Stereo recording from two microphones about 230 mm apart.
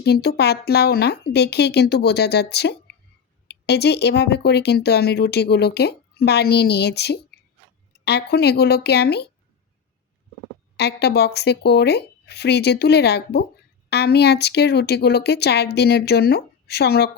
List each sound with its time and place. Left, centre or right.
0.0 s speech: left
10.8 s speech: left